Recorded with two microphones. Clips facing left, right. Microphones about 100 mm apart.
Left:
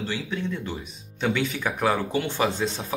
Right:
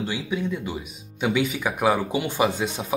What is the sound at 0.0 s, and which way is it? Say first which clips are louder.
Speech: right 2 dB; 10° right (ahead or behind).